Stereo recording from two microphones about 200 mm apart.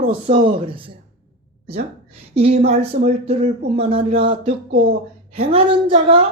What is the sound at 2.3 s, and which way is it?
Speech, 30° right (ahead or behind).